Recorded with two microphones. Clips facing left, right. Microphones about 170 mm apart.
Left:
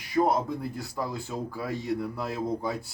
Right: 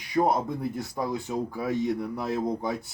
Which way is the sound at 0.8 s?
20° right (ahead or behind).